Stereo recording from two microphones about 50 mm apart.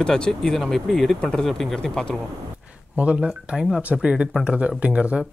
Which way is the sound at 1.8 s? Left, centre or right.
Centre.